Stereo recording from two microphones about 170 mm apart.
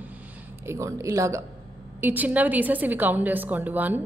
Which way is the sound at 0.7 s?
15° right (ahead or behind).